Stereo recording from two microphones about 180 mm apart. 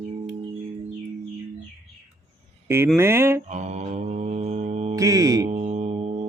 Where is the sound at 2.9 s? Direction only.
15° right (ahead or behind).